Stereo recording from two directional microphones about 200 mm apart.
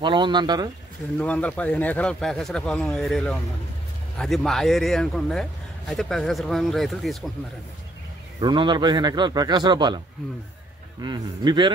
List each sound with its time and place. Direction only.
0.0 s speech: 25° right (ahead or behind)
1.1 s a man's voice: 5° left (ahead or behind)
8.4 s speech: 25° right (ahead or behind)
11.0 s speech: 20° right (ahead or behind)